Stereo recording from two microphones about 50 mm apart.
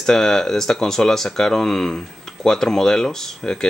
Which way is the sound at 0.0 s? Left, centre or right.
Centre.